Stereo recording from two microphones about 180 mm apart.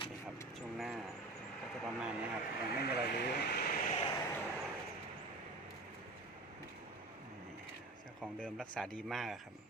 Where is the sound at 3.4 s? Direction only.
65° left (ahead or behind).